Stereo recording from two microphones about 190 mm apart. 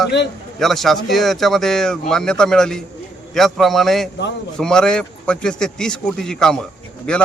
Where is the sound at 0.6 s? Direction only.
Centre (ahead or behind).